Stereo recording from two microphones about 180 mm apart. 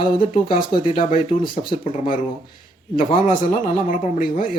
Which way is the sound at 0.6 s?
25° left (ahead or behind).